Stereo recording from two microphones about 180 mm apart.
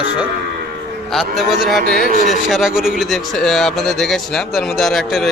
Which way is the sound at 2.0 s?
45° left (ahead or behind).